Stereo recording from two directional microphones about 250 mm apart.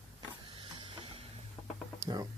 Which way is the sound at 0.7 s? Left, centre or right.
Right.